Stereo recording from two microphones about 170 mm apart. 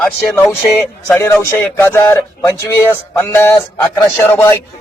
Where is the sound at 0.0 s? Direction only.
10° left (ahead or behind).